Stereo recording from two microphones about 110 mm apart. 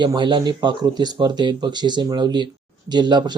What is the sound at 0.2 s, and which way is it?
Speech, 45° right (ahead or behind).